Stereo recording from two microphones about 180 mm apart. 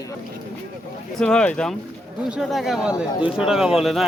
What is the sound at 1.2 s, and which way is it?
Speech, 5° left (ahead or behind).